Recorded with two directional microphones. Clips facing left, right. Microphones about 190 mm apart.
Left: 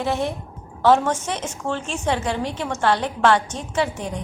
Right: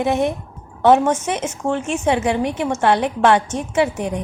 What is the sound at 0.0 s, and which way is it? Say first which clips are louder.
A woman's voice: right 5 dB; 20° right (ahead or behind).